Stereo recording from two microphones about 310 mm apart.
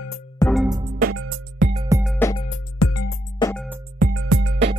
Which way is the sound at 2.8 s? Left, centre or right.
Left.